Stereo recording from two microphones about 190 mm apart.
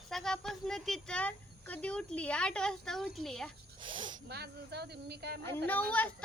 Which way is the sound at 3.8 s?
25° right (ahead or behind).